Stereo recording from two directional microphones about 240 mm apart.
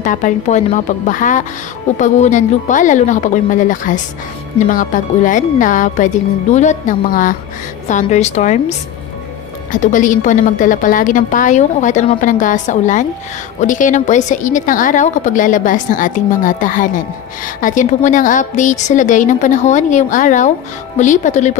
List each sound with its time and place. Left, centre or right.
0.0 s a woman's voice: left